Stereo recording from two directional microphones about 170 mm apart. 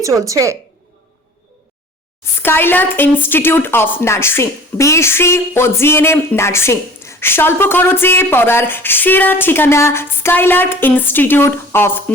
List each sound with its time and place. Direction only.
0.0 s a woman's voice: 20° right (ahead or behind)
2.4 s a woman's voice: 10° left (ahead or behind)